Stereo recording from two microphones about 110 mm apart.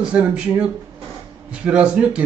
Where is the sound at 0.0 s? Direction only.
10° right (ahead or behind).